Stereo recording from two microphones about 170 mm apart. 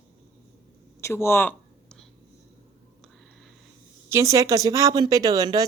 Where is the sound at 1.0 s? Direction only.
15° left (ahead or behind).